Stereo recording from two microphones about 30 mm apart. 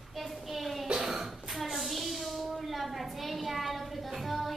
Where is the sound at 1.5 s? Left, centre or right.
Centre.